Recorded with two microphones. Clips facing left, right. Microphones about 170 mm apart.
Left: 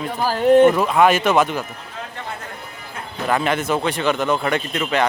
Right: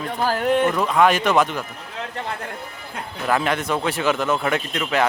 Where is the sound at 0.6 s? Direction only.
25° left (ahead or behind).